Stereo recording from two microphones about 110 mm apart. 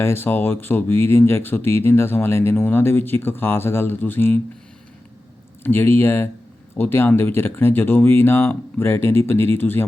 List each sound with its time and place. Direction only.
0.0 s speech: 20° left (ahead or behind)
5.6 s speech: 20° left (ahead or behind)